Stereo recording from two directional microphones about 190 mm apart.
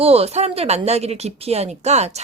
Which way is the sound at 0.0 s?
30° right (ahead or behind).